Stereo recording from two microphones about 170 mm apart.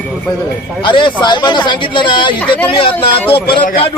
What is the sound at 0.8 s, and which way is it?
A man's voice, 30° left (ahead or behind).